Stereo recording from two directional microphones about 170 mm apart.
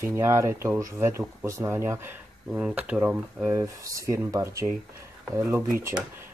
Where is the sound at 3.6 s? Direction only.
20° right (ahead or behind).